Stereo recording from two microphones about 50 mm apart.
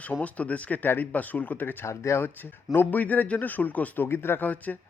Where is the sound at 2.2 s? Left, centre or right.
Left.